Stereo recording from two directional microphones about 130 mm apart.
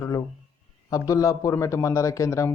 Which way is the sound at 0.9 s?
25° left (ahead or behind).